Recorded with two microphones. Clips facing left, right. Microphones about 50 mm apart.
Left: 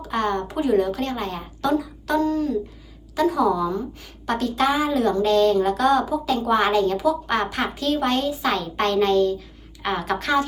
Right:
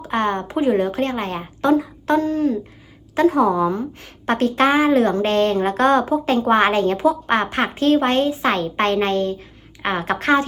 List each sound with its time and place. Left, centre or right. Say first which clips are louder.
0.0 s a woman's voice: right 3 dB; right